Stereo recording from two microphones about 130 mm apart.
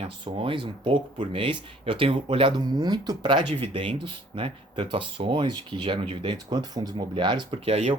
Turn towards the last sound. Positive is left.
turn(degrees=-50)  # may be behind; listen again after turning